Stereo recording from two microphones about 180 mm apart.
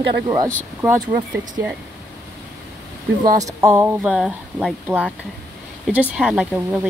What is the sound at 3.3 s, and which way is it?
Speech, 15° right (ahead or behind).